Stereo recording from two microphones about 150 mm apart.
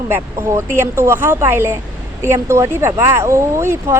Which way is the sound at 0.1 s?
15° right (ahead or behind).